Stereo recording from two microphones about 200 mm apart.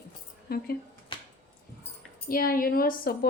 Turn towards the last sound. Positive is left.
turn(degrees=45)  # may be behind; listen again after turning